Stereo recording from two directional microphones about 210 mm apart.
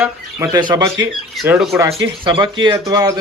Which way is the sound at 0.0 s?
15° right (ahead or behind).